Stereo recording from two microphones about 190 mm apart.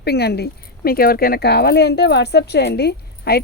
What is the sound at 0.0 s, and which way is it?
Speech, 60° left (ahead or behind).